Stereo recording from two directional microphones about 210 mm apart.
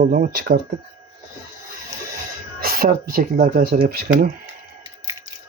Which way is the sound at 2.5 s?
45° right (ahead or behind).